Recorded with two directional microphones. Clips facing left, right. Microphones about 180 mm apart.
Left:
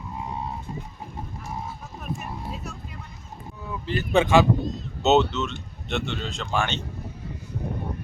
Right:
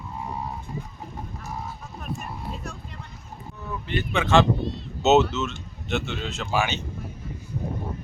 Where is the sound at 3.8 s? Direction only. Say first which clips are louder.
Left 5 dB; 35° left (ahead or behind).